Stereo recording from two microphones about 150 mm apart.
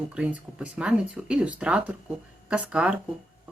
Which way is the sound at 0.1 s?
10° right (ahead or behind).